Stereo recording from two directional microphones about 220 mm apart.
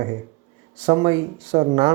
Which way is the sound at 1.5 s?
30° right (ahead or behind).